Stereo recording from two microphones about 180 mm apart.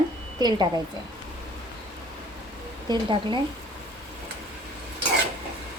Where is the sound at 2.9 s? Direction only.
25° right (ahead or behind).